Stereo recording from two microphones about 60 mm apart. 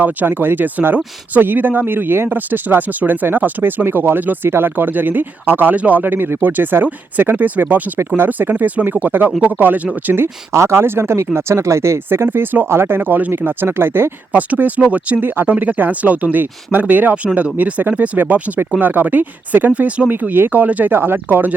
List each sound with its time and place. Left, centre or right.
0.0 s speech: right
10.5 s speech: right
10.8 s speech: right
12.0 s speech: right
14.3 s speech: right
20.1 s speech: right